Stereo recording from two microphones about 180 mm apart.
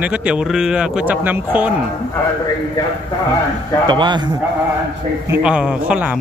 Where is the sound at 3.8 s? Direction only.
25° right (ahead or behind).